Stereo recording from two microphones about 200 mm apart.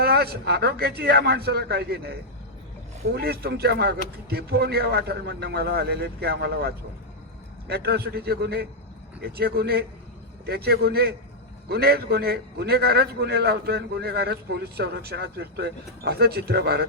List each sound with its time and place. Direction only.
0.0 s a man's voice: 50° right (ahead or behind)